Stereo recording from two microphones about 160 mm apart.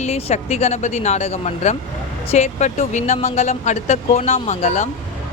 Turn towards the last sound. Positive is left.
turn(degrees=45)  # may be behind; listen again after turning